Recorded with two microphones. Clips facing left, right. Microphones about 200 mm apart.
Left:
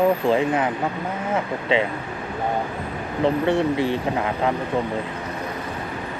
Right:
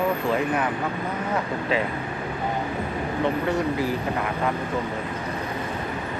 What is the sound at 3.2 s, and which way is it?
Speech, 30° left (ahead or behind).